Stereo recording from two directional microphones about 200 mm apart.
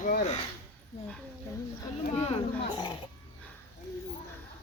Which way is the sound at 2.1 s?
30° left (ahead or behind).